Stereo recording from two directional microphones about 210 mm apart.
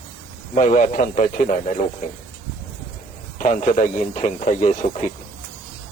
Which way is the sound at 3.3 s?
40° left (ahead or behind).